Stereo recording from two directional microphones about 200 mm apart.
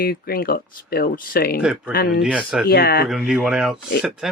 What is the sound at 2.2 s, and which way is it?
Speech, 5° right (ahead or behind).